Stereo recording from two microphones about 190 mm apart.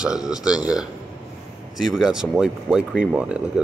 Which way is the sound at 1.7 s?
Centre (ahead or behind).